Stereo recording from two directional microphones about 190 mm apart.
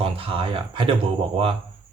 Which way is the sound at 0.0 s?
30° right (ahead or behind).